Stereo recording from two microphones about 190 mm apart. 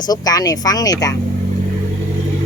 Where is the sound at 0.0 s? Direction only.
20° left (ahead or behind).